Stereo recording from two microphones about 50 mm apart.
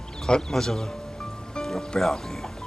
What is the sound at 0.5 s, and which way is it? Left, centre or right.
Speech, centre.